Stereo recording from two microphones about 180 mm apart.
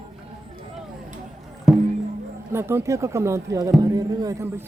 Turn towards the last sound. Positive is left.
turn(degrees=-15)  # may be behind; listen again after turning